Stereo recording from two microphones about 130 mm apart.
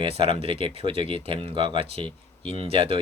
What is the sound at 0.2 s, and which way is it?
Speech, 45° right (ahead or behind).